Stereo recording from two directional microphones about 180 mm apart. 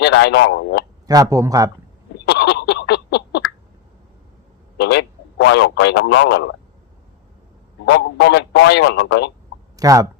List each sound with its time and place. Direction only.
0.0 s speech: 75° left (ahead or behind)
1.0 s speech: 20° right (ahead or behind)
2.2 s a sound: 70° left (ahead or behind)
4.8 s speech: 70° left (ahead or behind)
7.9 s speech: 70° left (ahead or behind)
9.7 s speech: 20° right (ahead or behind)